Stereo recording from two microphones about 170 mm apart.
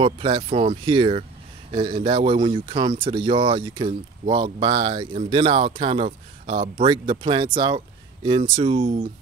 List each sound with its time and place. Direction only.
0.0 s speech: 30° right (ahead or behind)